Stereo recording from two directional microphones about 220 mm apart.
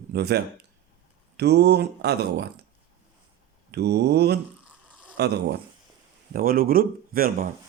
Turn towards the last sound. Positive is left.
turn(degrees=-40)  # may be behind; listen again after turning